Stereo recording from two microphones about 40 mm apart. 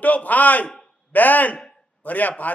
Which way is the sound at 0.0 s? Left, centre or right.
Left.